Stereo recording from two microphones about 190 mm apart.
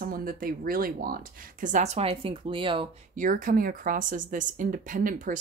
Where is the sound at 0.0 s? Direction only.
50° right (ahead or behind); by 2.9 s 25° right (ahead or behind).